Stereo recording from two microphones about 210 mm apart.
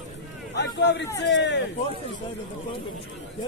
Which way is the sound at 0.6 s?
55° left (ahead or behind).